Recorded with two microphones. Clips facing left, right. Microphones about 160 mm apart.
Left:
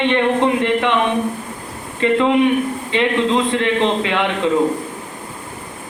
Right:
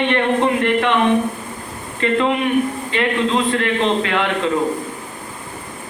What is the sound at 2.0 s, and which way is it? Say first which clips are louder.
A man's voice: left 4 dB; 20° left (ahead or behind).